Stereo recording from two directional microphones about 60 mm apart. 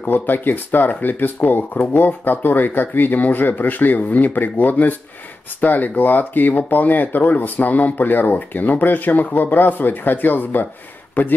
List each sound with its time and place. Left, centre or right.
0.0 s speech: left